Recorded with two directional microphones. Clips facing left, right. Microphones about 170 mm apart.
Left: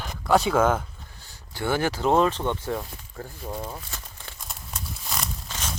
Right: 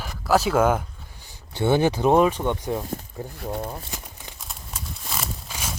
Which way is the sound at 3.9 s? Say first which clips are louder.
Right 3 dB; 15° right (ahead or behind).